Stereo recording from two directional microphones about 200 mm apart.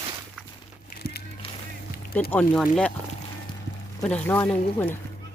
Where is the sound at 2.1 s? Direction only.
10° left (ahead or behind).